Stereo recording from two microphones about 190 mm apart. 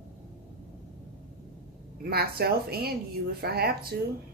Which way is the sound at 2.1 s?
55° right (ahead or behind).